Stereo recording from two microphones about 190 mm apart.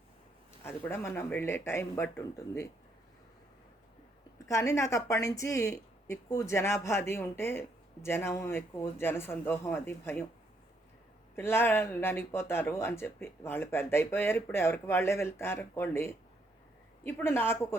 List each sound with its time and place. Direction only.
0.6 s speech: 10° left (ahead or behind)
4.4 s speech: 15° left (ahead or behind)
11.3 s speech: 10° left (ahead or behind)